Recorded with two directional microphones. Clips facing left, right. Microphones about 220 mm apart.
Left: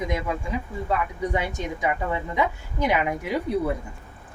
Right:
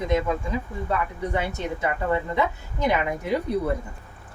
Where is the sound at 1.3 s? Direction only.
15° left (ahead or behind).